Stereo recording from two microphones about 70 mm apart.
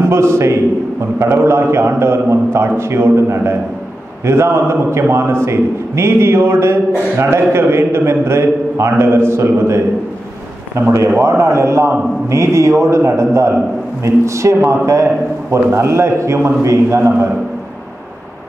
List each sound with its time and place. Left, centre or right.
0.0 s a man's voice: right